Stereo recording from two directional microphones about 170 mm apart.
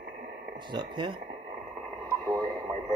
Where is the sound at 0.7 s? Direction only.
25° right (ahead or behind).